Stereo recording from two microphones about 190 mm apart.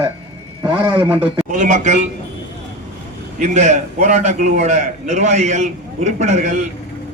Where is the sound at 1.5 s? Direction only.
40° right (ahead or behind).